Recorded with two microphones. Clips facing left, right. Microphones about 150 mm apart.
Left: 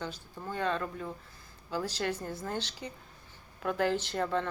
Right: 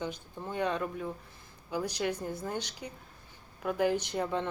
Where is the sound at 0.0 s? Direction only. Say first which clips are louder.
Right 2 dB; 15° right (ahead or behind).